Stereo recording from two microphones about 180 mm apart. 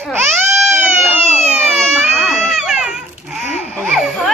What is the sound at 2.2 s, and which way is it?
Baby cry, centre (ahead or behind).